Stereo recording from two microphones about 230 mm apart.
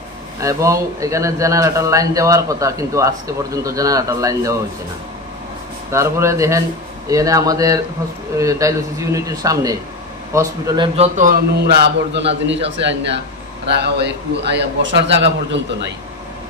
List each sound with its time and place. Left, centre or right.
0.4 s a man's voice: centre
5.9 s a man's voice: centre
11.0 s a man's voice: right
13.8 s a man's voice: right